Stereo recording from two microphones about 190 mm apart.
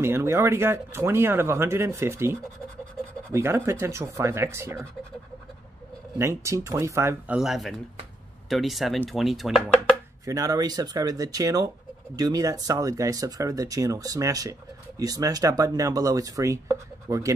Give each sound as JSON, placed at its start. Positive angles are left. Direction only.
{"t": 0.0, "sound": "speech", "side_deg": -15}
{"t": 6.1, "sound": "speech", "side_deg": -15}
{"t": 10.2, "sound": "speech", "side_deg": -20}